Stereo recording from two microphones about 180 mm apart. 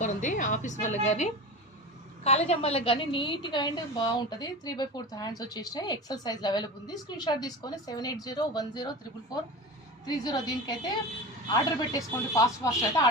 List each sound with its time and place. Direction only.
0.0 s a woman's voice: 45° left (ahead or behind); by 12.4 s 20° left (ahead or behind)